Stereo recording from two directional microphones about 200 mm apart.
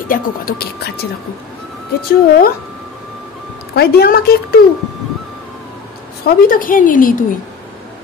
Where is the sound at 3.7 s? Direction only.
50° left (ahead or behind).